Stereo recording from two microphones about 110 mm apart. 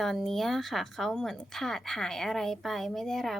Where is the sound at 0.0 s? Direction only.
Centre (ahead or behind).